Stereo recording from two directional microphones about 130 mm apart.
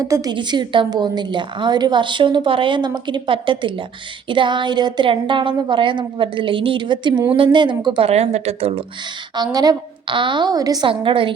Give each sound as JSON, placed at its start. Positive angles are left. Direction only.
{"t": 0.0, "sound": "a woman's voice", "side_deg": -25}
{"t": 8.0, "sound": "speech", "side_deg": -55}
{"t": 9.3, "sound": "a woman's voice", "side_deg": -30}